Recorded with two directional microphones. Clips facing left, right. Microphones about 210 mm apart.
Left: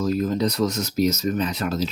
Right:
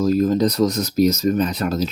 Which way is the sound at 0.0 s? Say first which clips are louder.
Right 5 dB; 40° right (ahead or behind).